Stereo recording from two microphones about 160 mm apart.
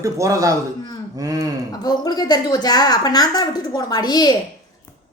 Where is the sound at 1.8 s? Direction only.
25° left (ahead or behind).